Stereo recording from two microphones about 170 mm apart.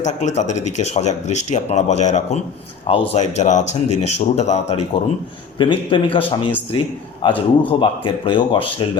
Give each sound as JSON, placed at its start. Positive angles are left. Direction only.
{"t": 0.0, "sound": "speech", "side_deg": 40}